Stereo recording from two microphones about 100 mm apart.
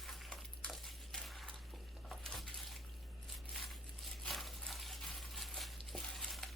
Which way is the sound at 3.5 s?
Centre (ahead or behind).